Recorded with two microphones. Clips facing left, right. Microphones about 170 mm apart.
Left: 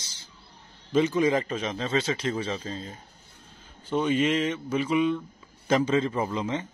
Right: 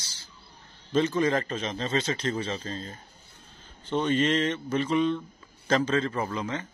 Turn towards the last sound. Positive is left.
turn(degrees=20)  # may be behind; listen again after turning